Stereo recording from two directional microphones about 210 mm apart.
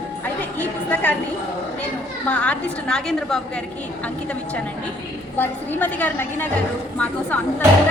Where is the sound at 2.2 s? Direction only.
5° left (ahead or behind).